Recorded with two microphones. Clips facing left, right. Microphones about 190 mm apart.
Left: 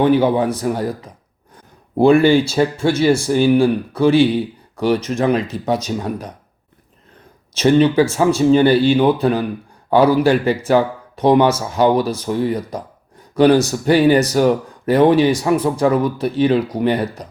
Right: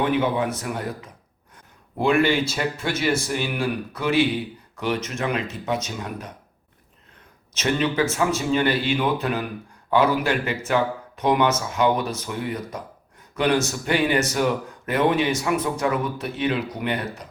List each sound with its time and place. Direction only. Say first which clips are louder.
0.0 s speech: left 8 dB; 35° left (ahead or behind)
7.5 s speech: left 10 dB; 35° left (ahead or behind)